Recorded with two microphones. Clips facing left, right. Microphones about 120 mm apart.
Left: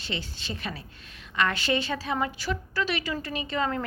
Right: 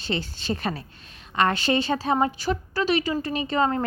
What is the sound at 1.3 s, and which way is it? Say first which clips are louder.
A woman's voice: right 4 dB; 30° right (ahead or behind).